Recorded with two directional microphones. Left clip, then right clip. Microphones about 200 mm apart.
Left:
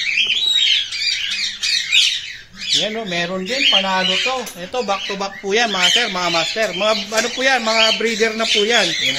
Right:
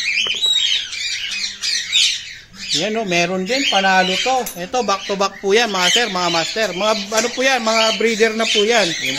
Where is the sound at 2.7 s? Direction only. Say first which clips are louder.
Right 2 dB; 45° right (ahead or behind).